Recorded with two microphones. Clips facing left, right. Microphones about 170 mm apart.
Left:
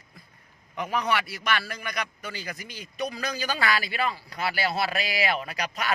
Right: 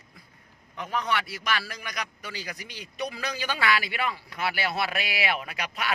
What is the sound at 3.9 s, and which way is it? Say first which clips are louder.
Speech: left 2 dB; 35° left (ahead or behind).